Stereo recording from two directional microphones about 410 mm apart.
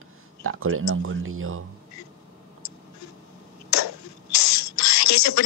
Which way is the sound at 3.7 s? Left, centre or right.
Left.